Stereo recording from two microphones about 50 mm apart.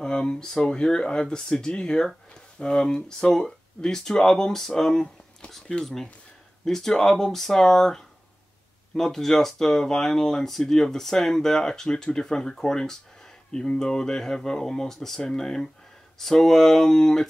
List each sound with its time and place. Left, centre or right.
0.0 s speech: centre